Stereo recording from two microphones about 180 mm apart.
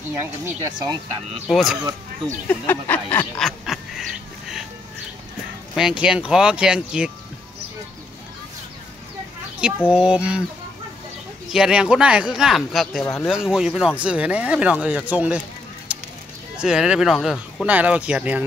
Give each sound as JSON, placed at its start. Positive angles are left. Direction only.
{"t": 0.2, "sound": "speech", "side_deg": -15}
{"t": 1.5, "sound": "speech", "side_deg": 0}
{"t": 2.4, "sound": "a sound", "side_deg": 10}
{"t": 5.8, "sound": "speech", "side_deg": -5}
{"t": 9.8, "sound": "speech", "side_deg": -5}
{"t": 11.5, "sound": "speech", "side_deg": -5}
{"t": 15.9, "sound": "a sound", "side_deg": -5}
{"t": 16.5, "sound": "speech", "side_deg": -5}